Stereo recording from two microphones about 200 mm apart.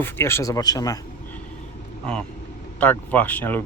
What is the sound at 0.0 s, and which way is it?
Speech, 15° left (ahead or behind).